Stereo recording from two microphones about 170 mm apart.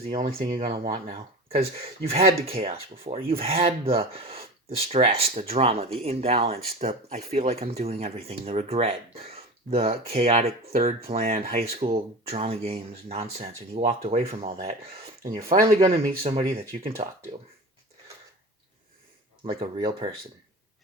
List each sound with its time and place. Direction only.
0.3 s speech: 35° right (ahead or behind)
15.2 s speech: 60° right (ahead or behind)
16.0 s speech: 40° right (ahead or behind)
19.5 s speech: 30° right (ahead or behind)